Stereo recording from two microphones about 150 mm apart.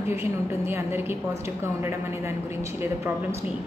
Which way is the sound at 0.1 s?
15° right (ahead or behind).